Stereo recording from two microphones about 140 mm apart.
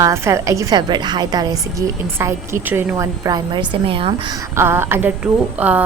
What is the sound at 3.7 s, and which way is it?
Speech, 40° right (ahead or behind).